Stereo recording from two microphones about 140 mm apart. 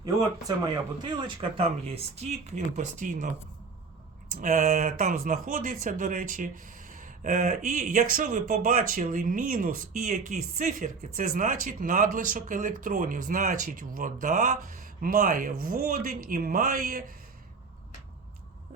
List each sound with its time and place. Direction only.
0.0 s speech: 25° right (ahead or behind)
1.4 s speech: 45° right (ahead or behind); by 3.2 s 65° right (ahead or behind)
4.4 s speech: 65° right (ahead or behind); by 17.0 s 90° right